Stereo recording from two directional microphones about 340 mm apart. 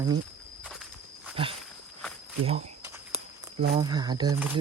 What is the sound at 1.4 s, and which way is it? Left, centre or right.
Speech, centre.